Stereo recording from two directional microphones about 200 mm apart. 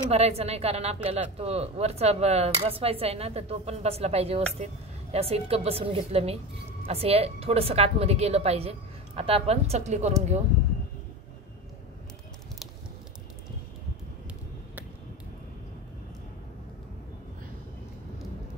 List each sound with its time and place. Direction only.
0.1 s a woman's voice: 30° right (ahead or behind)